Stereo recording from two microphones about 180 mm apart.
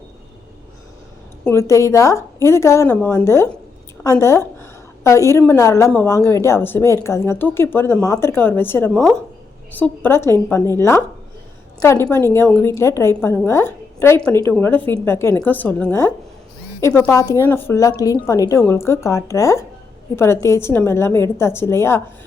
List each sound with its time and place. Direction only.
1.5 s a woman's voice: 15° left (ahead or behind)
12.0 s a woman's voice: 15° left (ahead or behind)